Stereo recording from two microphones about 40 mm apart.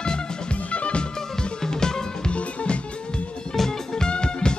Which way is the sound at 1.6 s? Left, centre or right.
Centre.